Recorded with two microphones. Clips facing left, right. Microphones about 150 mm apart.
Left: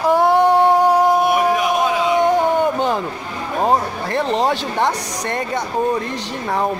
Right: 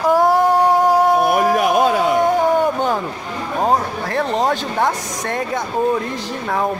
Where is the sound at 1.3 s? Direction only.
50° right (ahead or behind).